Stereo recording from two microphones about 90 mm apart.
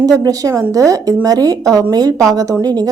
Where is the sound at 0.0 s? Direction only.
45° right (ahead or behind).